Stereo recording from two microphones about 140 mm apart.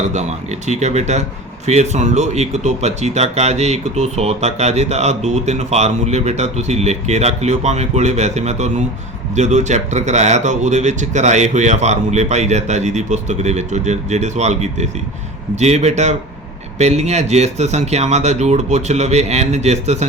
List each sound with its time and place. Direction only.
0.0 s speech: 55° right (ahead or behind)